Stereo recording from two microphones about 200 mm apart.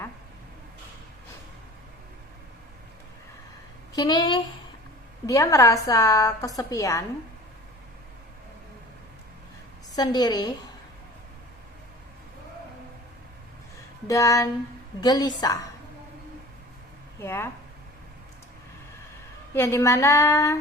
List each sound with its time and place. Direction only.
3.9 s a woman's voice: 20° left (ahead or behind)
9.9 s a woman's voice: 20° left (ahead or behind)
14.1 s a woman's voice: 15° left (ahead or behind)
17.2 s a woman's voice: 15° left (ahead or behind)
19.5 s a woman's voice: 15° left (ahead or behind)